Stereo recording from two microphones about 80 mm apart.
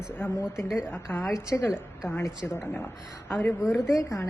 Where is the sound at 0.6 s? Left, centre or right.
Centre.